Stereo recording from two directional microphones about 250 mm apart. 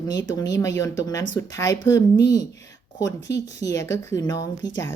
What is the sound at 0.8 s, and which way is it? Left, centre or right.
Speech, centre.